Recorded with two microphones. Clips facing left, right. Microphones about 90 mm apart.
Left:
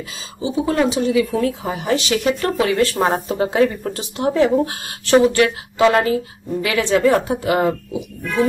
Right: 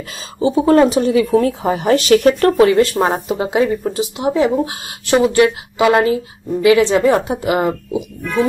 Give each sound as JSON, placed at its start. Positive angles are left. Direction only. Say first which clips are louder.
{"t": 0.6, "sound": "speech", "louder": "right 6 dB", "side_deg": -35}
{"t": 2.6, "sound": "speech", "louder": "right 4 dB", "side_deg": -20}
{"t": 4.6, "sound": "speech", "louder": "right 1 dB", "side_deg": -20}